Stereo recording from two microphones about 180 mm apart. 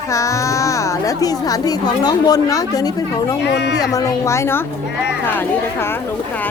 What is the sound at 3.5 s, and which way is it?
Speech, 70° left (ahead or behind).